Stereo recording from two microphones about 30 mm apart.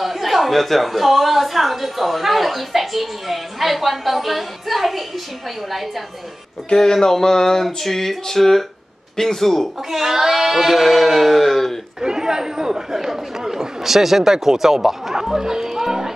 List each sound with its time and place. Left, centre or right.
0.0 s a woman's voice: centre
6.8 s a sound: centre
9.8 s speech: centre
12.0 s chatter: right
15.4 s music: centre